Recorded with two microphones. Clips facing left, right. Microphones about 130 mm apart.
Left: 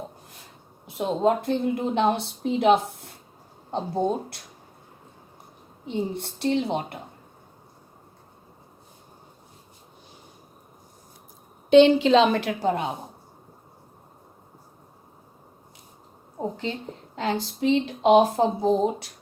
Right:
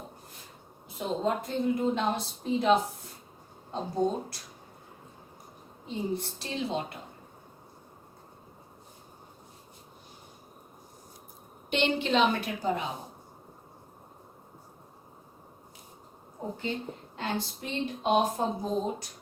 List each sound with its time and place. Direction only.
0.9 s speech: 65° left (ahead or behind)
3.7 s a woman's voice: 65° left (ahead or behind)
5.9 s a woman's voice: 65° left (ahead or behind)
11.9 s speech: 90° left; by 12.9 s 65° left (ahead or behind)
17.2 s speech: 90° left